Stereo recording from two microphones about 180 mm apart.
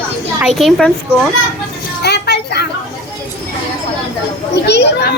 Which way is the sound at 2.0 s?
65° left (ahead or behind).